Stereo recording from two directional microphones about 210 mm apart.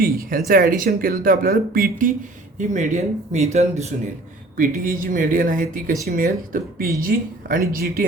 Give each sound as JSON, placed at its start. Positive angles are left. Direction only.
{"t": 0.0, "sound": "speech", "side_deg": -45}